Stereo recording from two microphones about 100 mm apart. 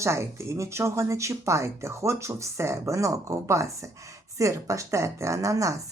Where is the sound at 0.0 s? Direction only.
25° right (ahead or behind).